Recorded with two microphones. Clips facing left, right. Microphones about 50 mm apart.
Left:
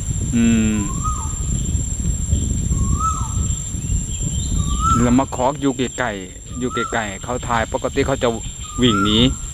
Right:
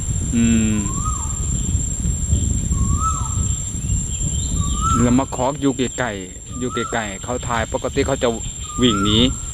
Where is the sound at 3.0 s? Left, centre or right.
Right.